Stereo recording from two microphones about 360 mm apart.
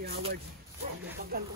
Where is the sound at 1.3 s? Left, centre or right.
Right.